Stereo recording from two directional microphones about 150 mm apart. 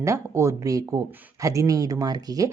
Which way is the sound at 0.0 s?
20° right (ahead or behind).